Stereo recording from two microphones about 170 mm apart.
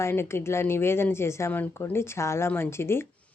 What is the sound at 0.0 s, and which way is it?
Speech, 15° left (ahead or behind).